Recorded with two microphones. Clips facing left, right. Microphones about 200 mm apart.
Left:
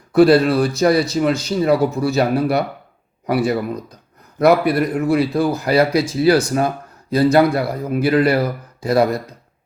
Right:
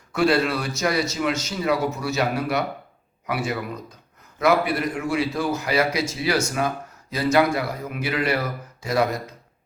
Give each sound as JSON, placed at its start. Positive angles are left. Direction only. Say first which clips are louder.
{"t": 0.1, "sound": "speech", "louder": "left 9 dB", "side_deg": 35}